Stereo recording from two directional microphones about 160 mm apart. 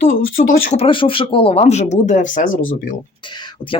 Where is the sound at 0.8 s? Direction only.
35° left (ahead or behind); by 2.5 s 55° left (ahead or behind).